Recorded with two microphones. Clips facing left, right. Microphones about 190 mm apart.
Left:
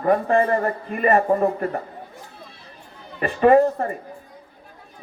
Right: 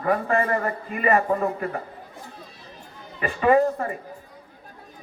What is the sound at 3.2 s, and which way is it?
Speech, 45° left (ahead or behind).